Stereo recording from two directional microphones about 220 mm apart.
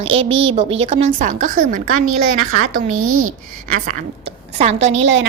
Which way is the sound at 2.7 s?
70° right (ahead or behind).